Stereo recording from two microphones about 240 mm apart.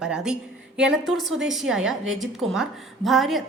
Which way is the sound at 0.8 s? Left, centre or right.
Right.